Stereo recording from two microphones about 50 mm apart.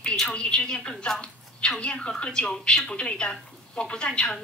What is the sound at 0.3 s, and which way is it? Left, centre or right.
A woman's voice, left.